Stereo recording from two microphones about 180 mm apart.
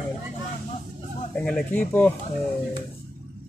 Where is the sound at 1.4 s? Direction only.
5° left (ahead or behind).